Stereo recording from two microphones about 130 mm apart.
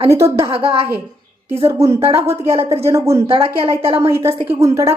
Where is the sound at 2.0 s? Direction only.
50° right (ahead or behind).